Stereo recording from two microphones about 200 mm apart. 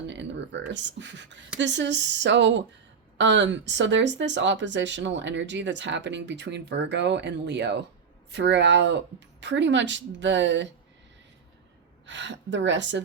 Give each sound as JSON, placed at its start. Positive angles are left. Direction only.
{"t": 0.1, "sound": "speech", "side_deg": -60}
{"t": 12.0, "sound": "speech", "side_deg": -65}